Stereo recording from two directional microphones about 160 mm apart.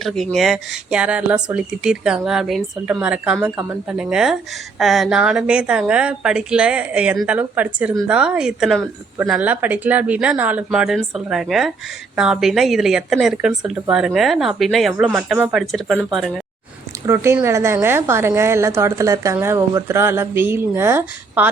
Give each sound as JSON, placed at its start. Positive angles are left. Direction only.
{"t": 0.0, "sound": "a woman's voice", "side_deg": 0}
{"t": 17.3, "sound": "a woman's voice", "side_deg": -15}